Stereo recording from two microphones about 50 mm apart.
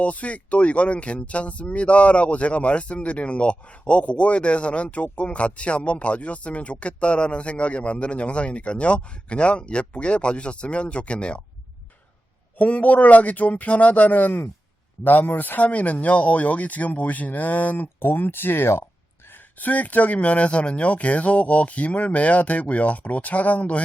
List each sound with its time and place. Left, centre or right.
0.0 s speech: left
12.5 s speech: left
19.5 s speech: left